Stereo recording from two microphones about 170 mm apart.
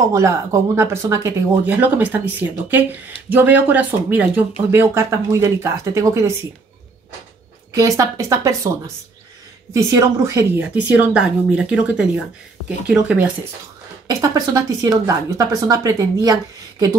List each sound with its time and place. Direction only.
0.1 s speech: 15° right (ahead or behind)
7.7 s speech: 20° right (ahead or behind)
14.0 s speech: 25° right (ahead or behind)